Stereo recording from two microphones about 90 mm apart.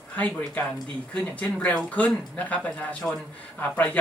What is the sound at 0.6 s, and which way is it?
Speech, 15° left (ahead or behind).